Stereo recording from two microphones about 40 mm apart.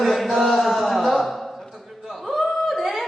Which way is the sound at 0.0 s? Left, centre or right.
Centre.